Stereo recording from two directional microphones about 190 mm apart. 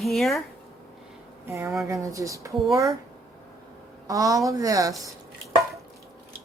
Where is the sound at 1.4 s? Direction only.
15° right (ahead or behind).